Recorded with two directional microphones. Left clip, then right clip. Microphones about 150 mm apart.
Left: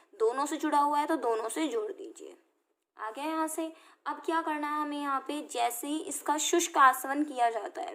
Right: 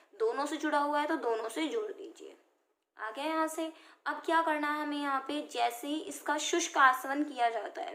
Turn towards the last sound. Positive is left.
turn(degrees=35)  # may be behind; listen again after turning